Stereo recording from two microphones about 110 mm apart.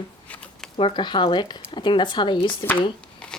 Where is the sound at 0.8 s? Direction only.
50° left (ahead or behind).